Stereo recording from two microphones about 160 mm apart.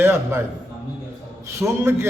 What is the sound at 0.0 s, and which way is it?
Speech, 15° right (ahead or behind).